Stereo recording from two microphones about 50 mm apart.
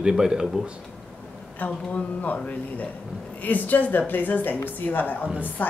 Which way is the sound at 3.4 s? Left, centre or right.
Left.